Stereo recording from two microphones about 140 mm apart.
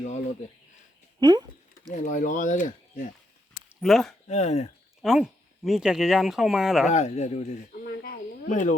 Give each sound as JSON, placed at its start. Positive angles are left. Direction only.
{"t": 1.2, "sound": "a sound", "side_deg": -30}
{"t": 1.9, "sound": "speech", "side_deg": 75}
{"t": 3.8, "sound": "speech", "side_deg": 0}
{"t": 4.3, "sound": "speech", "side_deg": 55}
{"t": 5.0, "sound": "speech", "side_deg": -5}
{"t": 6.9, "sound": "speech", "side_deg": 55}